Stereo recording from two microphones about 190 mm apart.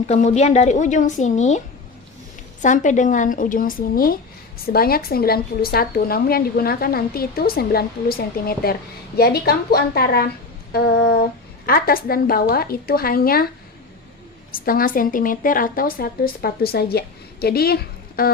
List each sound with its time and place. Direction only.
0.1 s a woman's voice: 35° left (ahead or behind); by 10.2 s 55° left (ahead or behind)
11.6 s speech: 50° left (ahead or behind)
14.5 s a woman's voice: 50° left (ahead or behind)